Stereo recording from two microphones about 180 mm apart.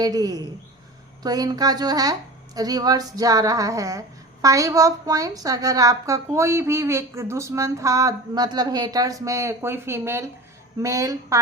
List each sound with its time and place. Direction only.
0.0 s a woman's voice: 20° right (ahead or behind)